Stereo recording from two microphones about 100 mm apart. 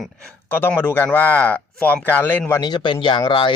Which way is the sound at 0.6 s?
20° left (ahead or behind).